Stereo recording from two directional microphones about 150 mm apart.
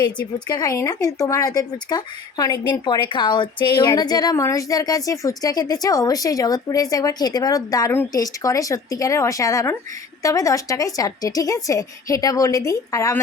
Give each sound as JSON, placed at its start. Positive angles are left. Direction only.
{"t": 0.4, "sound": "speech", "side_deg": 25}